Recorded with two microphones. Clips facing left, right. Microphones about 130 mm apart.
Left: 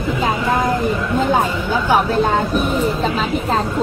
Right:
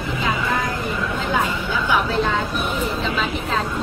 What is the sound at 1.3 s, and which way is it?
Speech, 45° left (ahead or behind).